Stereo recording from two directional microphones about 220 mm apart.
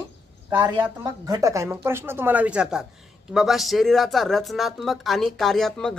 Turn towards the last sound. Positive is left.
turn(degrees=0)  # may be behind; listen again after turning